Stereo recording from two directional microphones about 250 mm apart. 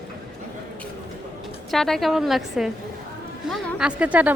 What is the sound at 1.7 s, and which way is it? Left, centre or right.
A woman's voice, centre.